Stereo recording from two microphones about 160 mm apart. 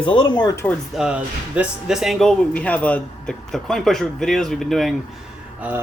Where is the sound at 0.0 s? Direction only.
30° left (ahead or behind).